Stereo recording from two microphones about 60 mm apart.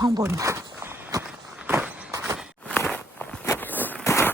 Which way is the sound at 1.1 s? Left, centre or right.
Right.